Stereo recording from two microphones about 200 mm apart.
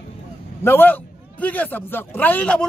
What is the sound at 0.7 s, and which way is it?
A man's voice, 10° left (ahead or behind).